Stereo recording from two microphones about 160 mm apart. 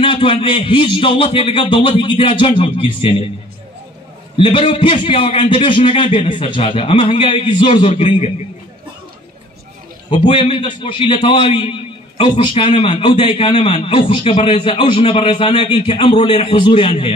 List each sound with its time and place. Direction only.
0.0 s a man's voice: 35° left (ahead or behind)
4.4 s a man's voice: 35° left (ahead or behind)
10.1 s a man's voice: 35° left (ahead or behind)